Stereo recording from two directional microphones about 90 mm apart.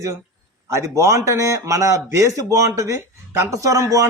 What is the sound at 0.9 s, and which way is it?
Speech, 35° right (ahead or behind).